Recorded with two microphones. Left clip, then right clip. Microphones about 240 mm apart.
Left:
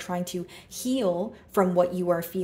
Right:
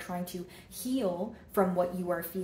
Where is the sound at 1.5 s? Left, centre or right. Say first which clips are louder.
Left 6 dB; left.